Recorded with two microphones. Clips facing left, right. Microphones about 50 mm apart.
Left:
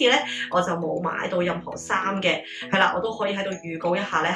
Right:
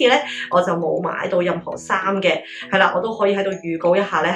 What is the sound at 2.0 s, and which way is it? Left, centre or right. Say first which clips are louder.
Speech: right 6 dB; right.